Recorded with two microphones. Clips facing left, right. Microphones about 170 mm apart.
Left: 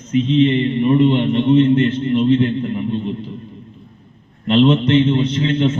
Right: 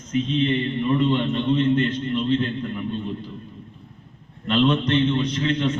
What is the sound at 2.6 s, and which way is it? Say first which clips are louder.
Speech: left 6 dB; 20° left (ahead or behind).